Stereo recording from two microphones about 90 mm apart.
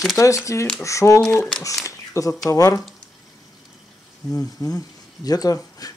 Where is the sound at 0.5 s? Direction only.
35° left (ahead or behind).